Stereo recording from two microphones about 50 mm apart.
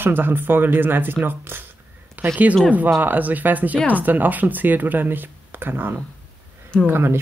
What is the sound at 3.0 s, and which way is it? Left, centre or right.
Speech, right.